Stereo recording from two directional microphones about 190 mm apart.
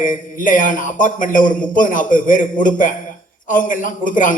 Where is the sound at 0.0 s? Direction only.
45° left (ahead or behind).